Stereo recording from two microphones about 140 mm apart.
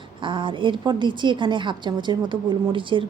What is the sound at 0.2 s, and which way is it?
A woman's voice, 35° right (ahead or behind).